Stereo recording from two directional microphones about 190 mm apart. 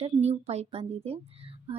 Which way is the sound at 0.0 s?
35° right (ahead or behind).